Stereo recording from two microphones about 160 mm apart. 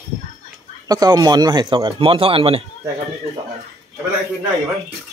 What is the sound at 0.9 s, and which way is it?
Speech, 25° right (ahead or behind).